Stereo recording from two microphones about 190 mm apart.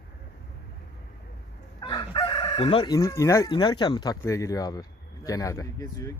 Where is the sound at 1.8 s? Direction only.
25° left (ahead or behind).